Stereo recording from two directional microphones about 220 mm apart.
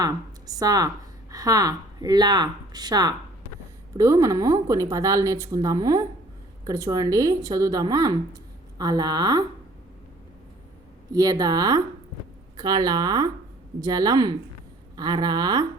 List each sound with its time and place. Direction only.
0.0 s speech: 15° right (ahead or behind)
11.1 s speech: 15° right (ahead or behind)